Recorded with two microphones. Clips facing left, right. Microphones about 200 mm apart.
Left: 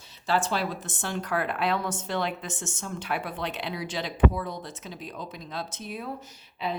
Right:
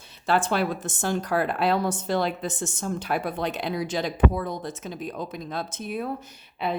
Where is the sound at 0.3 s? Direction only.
55° right (ahead or behind).